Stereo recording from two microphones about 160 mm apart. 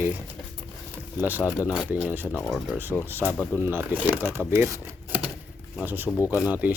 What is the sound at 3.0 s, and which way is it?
Speech, 15° right (ahead or behind).